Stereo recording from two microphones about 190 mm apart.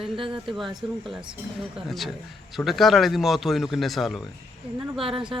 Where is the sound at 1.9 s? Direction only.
Centre (ahead or behind).